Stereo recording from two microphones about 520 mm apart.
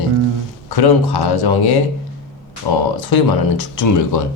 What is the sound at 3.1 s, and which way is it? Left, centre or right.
Speech, left.